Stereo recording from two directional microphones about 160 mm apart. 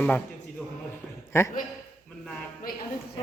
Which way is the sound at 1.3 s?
15° left (ahead or behind).